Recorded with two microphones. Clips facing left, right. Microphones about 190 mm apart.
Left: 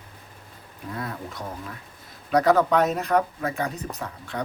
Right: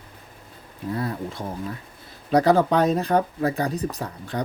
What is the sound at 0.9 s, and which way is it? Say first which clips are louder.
Speech: right 4 dB; 30° right (ahead or behind).